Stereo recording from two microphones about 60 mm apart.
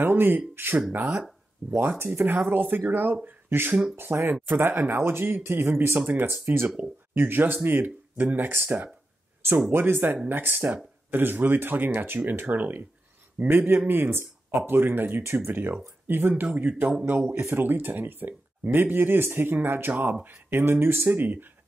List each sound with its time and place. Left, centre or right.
0.0 s speech: right
0.9 s speech: right
1.8 s speech: right
17.3 s speech: right